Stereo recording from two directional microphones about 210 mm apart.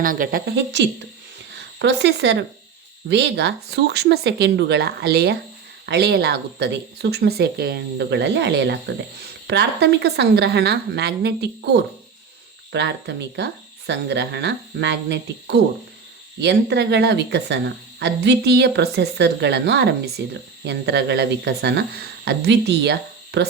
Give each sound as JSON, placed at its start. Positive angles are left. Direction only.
{"t": 0.0, "sound": "a woman's voice", "side_deg": -40}